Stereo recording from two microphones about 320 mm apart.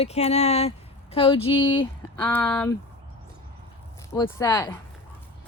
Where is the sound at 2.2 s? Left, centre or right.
Centre.